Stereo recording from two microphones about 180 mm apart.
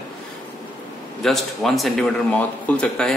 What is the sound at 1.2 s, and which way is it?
A man's voice, centre (ahead or behind).